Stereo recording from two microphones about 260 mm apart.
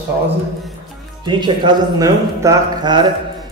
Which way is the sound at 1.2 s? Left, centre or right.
Centre.